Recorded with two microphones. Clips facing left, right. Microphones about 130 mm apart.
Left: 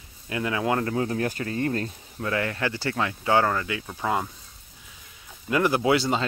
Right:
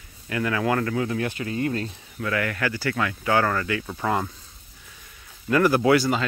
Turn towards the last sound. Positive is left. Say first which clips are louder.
# right 3 dB
turn(degrees=25)  # may be behind; listen again after turning